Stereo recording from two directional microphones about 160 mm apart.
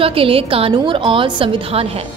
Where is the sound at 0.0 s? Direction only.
35° right (ahead or behind).